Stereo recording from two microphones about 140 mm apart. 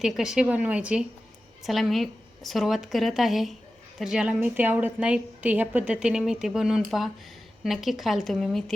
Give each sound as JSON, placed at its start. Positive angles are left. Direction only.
{"t": 0.0, "sound": "a woman's voice", "side_deg": -5}